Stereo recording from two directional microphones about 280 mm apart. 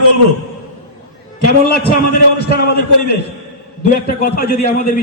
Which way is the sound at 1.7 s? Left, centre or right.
Left.